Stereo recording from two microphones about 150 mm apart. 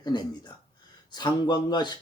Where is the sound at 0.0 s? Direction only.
30° left (ahead or behind).